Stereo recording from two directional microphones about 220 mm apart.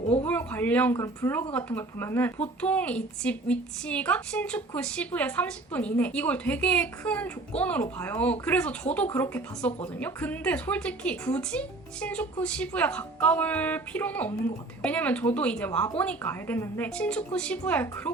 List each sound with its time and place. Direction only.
0.3 s a woman's voice: 5° left (ahead or behind)